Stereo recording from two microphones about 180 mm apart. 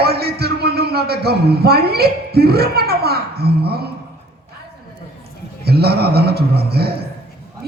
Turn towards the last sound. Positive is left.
turn(degrees=-60)  # may be behind; listen again after turning